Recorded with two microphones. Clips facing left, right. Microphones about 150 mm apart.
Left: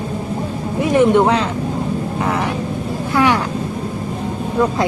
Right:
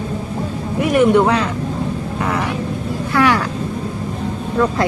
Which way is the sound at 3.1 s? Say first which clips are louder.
Even; 20° left (ahead or behind).